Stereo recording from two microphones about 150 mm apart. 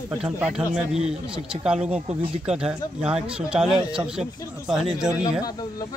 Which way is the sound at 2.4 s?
5° right (ahead or behind).